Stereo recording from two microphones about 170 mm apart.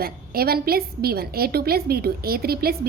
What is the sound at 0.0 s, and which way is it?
A woman's voice, 65° right (ahead or behind).